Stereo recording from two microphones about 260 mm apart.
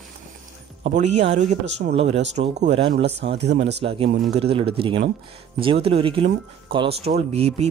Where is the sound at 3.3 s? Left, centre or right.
Right.